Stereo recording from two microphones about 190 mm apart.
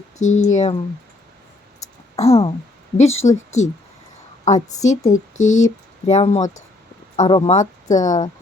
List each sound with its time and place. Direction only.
0.2 s speech: 90° left
0.5 s a woman's voice: 35° left (ahead or behind)
2.1 s a woman's voice: 30° left (ahead or behind)
7.5 s speech: 40° left (ahead or behind)